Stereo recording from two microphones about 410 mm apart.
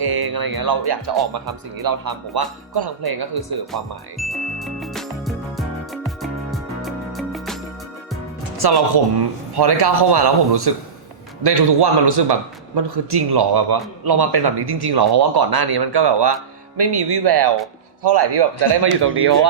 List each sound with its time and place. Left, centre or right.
0.0 s speech: right
4.2 s music: centre
8.4 s a man's voice: right